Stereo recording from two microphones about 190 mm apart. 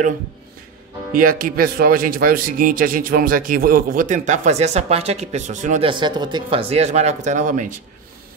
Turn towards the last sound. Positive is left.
turn(degrees=-45)  # may be behind; listen again after turning